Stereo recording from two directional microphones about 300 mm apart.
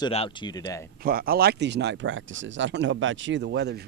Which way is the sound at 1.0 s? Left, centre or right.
Right.